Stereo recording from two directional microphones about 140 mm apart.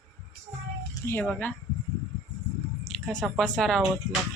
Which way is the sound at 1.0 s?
10° left (ahead or behind).